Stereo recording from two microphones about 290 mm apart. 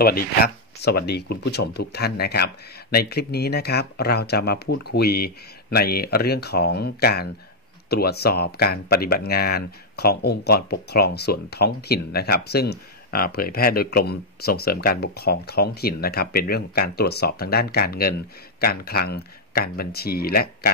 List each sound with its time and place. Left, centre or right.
0.0 s speech: left